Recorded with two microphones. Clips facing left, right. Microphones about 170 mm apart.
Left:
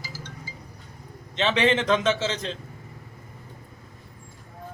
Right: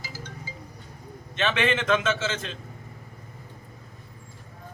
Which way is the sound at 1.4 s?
20° left (ahead or behind).